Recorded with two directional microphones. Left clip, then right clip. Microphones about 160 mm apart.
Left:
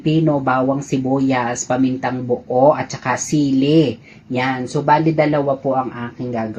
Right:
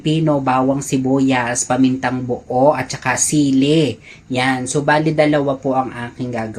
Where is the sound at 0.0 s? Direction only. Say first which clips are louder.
Even; 20° right (ahead or behind).